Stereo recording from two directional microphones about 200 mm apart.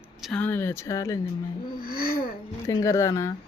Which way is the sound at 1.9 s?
45° left (ahead or behind).